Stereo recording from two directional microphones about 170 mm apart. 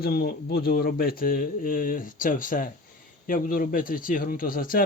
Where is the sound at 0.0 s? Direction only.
65° left (ahead or behind).